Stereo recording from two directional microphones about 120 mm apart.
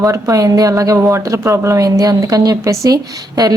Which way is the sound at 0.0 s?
25° right (ahead or behind).